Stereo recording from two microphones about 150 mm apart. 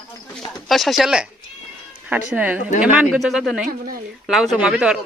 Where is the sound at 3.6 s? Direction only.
75° right (ahead or behind).